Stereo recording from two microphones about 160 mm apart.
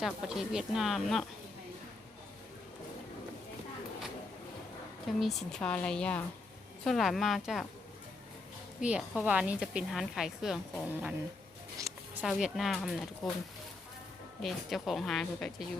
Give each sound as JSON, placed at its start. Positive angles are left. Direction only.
{"t": 0.0, "sound": "speech", "side_deg": -5}
{"t": 5.0, "sound": "speech", "side_deg": 0}
{"t": 8.8, "sound": "a woman's voice", "side_deg": -5}
{"t": 11.8, "sound": "a sound", "side_deg": -20}
{"t": 12.2, "sound": "speech", "side_deg": 0}
{"t": 14.4, "sound": "speech", "side_deg": 0}